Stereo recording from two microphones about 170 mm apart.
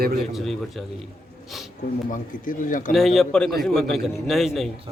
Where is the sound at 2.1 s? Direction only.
55° left (ahead or behind).